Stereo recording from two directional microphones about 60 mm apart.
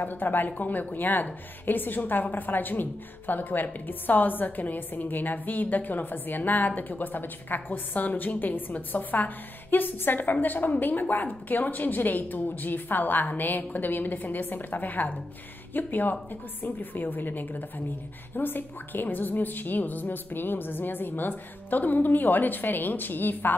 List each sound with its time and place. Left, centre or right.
0.0 s a woman's voice: left